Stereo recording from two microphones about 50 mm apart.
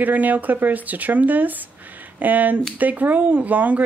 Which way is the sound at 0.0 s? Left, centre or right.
Right.